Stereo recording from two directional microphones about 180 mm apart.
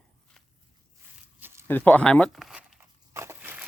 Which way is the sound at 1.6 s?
10° left (ahead or behind).